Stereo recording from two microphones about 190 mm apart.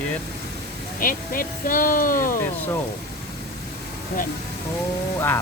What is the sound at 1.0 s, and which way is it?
Speech, 50° left (ahead or behind).